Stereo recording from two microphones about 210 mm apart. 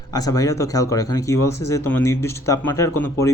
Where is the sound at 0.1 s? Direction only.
15° left (ahead or behind).